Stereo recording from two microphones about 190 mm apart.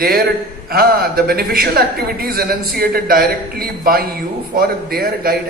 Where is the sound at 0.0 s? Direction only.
50° right (ahead or behind).